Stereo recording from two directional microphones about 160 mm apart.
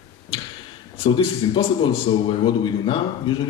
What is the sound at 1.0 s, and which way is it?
A man's voice, 30° left (ahead or behind).